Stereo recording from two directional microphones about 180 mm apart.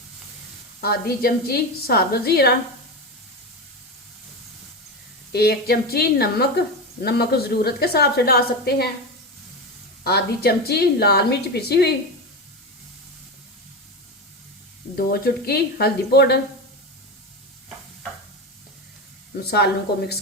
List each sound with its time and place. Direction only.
0.8 s speech: 60° left (ahead or behind)
5.3 s speech: 60° left (ahead or behind)
10.0 s speech: 60° left (ahead or behind)
14.9 s speech: 55° left (ahead or behind)
19.5 s speech: 65° left (ahead or behind)